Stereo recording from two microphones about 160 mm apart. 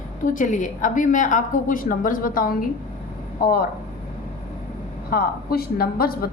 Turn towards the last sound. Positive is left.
turn(degrees=70)  # may be behind; listen again after turning